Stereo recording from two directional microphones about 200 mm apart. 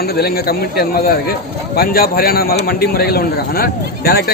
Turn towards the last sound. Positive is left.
turn(degrees=50)  # may be behind; listen again after turning